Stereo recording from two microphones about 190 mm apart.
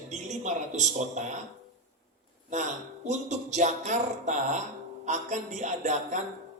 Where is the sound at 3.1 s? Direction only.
40° right (ahead or behind).